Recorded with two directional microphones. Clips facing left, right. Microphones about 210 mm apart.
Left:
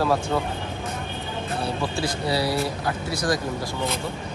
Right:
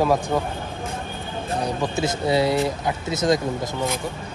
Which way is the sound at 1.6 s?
20° right (ahead or behind).